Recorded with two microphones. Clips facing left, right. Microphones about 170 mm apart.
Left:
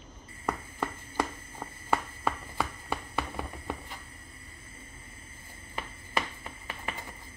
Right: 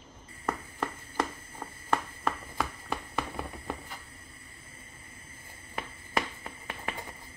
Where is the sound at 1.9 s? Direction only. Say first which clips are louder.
Even; 5° left (ahead or behind).